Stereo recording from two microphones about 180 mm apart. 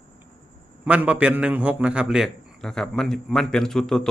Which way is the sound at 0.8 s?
5° right (ahead or behind).